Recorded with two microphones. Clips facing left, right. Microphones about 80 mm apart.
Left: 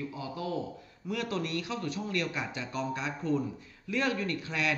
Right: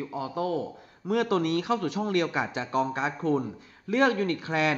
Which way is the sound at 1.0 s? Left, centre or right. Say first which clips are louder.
Right 8 dB; right.